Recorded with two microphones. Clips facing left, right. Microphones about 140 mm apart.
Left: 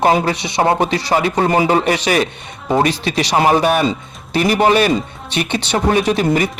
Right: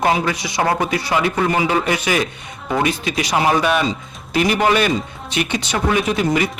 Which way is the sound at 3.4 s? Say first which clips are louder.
Left 3 dB; 40° left (ahead or behind).